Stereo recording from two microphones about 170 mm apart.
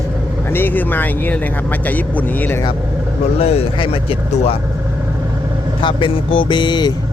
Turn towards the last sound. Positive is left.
turn(degrees=25)  # may be behind; listen again after turning